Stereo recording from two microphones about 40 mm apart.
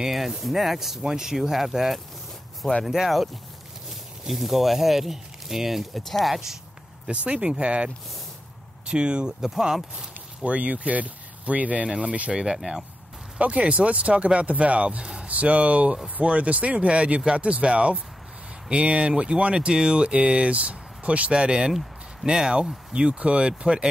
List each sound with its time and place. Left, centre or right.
0.0 s speech: centre
7.2 s speech: right
9.4 s speech: centre
10.4 s speech: right
11.9 s speech: right